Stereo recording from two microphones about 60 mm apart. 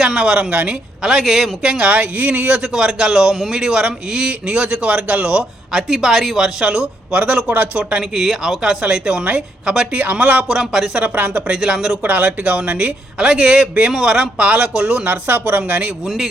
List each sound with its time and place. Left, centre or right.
0.0 s a man's voice: centre
2.6 s a man's voice: centre; by 10.4 s right
10.5 s a man's voice: centre
11.0 s speech: right
11.5 s a man's voice: centre
12.0 s speech: right
13.2 s a man's voice: centre
15.0 s speech: right